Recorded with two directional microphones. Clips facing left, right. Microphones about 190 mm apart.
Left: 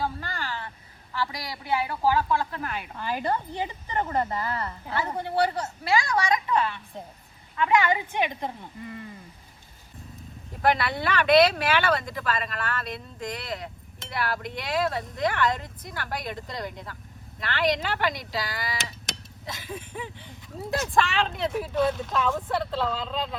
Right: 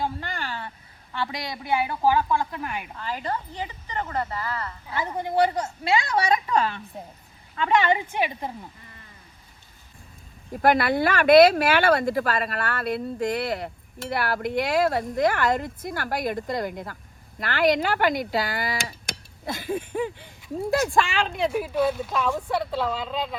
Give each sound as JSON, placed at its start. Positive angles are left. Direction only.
{"t": 0.0, "sound": "a sound", "side_deg": -20}
{"t": 1.1, "sound": "a woman's voice", "side_deg": -25}
{"t": 3.0, "sound": "a woman's voice", "side_deg": 15}
{"t": 4.9, "sound": "a woman's voice", "side_deg": -10}
{"t": 6.1, "sound": "a woman's voice", "side_deg": -25}
{"t": 8.0, "sound": "a woman's voice", "side_deg": -5}
{"t": 10.6, "sound": "speech", "side_deg": -50}
{"t": 21.0, "sound": "speech", "side_deg": 0}